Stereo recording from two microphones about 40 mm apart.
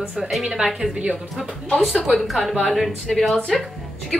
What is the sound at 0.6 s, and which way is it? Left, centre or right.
Speech, right.